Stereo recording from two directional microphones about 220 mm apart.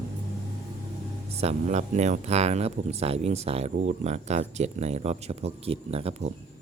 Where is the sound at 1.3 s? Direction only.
30° right (ahead or behind).